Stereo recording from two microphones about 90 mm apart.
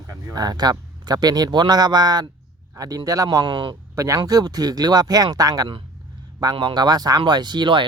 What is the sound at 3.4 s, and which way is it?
Speech, 65° right (ahead or behind).